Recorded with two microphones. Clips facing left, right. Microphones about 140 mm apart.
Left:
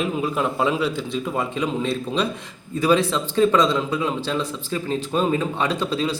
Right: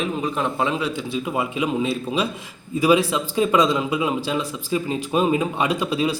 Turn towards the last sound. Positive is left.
turn(degrees=-10)  # may be behind; listen again after turning